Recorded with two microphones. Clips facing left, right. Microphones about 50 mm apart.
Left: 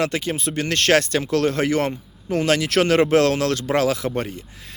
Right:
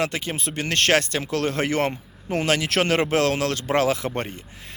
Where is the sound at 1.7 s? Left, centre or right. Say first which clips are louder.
Left 2 dB; right.